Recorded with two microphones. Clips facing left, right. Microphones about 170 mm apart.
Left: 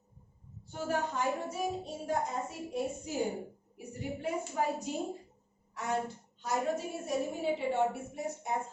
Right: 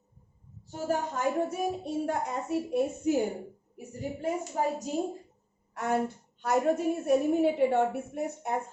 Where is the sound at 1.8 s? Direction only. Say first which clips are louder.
Right 4 dB; 65° right (ahead or behind).